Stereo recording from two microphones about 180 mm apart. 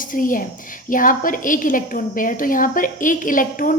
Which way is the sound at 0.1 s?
50° left (ahead or behind).